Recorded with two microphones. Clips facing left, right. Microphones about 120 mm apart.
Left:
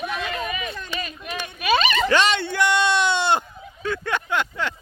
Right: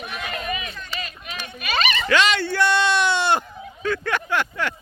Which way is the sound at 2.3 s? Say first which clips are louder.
Right 1 dB; 20° left (ahead or behind).